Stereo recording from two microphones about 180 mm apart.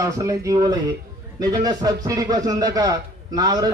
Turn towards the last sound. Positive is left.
turn(degrees=-20)  # may be behind; listen again after turning